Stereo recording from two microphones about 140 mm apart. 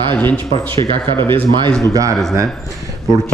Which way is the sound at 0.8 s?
35° right (ahead or behind).